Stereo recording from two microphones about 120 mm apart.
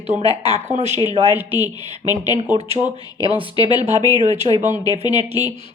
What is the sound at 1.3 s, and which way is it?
Speech, 15° right (ahead or behind).